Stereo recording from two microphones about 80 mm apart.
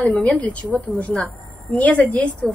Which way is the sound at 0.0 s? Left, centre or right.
Centre.